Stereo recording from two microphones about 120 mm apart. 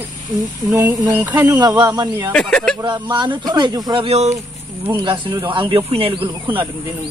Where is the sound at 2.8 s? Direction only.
40° right (ahead or behind).